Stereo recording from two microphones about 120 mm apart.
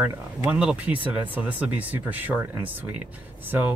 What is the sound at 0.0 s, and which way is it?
Speech, 15° right (ahead or behind).